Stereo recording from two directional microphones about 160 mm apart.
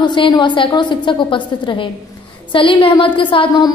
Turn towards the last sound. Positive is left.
turn(degrees=30)  # may be behind; listen again after turning